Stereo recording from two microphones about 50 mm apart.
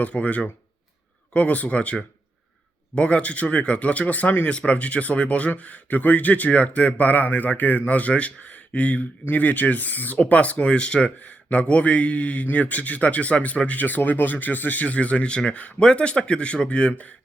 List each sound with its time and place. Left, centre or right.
0.0 s speech: left
4.4 s speech: left